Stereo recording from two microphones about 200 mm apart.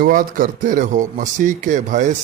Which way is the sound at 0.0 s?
45° right (ahead or behind).